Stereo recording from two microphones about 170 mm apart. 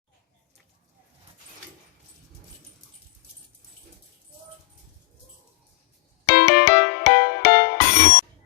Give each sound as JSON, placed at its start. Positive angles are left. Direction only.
{"t": 6.2, "sound": "music", "side_deg": 75}